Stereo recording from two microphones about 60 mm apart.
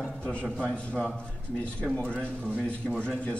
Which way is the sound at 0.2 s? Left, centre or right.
Left.